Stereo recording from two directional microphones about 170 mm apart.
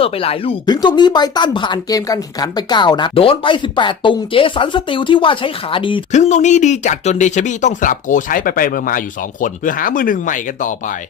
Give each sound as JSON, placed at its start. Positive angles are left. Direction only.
{"t": 0.0, "sound": "speech", "side_deg": 35}
{"t": 6.1, "sound": "speech", "side_deg": 45}